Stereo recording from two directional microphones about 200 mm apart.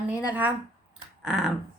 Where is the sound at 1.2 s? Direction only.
5° right (ahead or behind).